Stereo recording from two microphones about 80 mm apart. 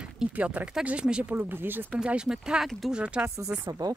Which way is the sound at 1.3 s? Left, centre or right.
Right.